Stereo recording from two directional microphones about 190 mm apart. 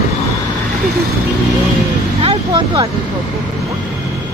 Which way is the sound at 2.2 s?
25° right (ahead or behind).